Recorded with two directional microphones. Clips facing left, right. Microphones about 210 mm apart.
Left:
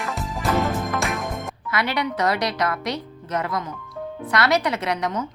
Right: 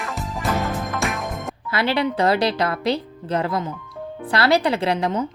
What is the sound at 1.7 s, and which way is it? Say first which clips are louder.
Speech: right 4 dB; 30° right (ahead or behind).